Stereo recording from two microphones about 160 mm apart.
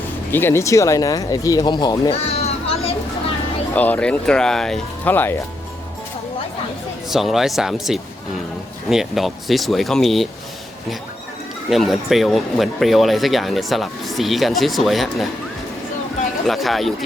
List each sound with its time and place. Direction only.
0.3 s speech: 15° left (ahead or behind)
2.1 s a sound: 40° left (ahead or behind)
3.8 s speech: 10° left (ahead or behind)
7.1 s speech: centre (ahead or behind)
11.7 s speech: centre (ahead or behind)
16.5 s speech: centre (ahead or behind)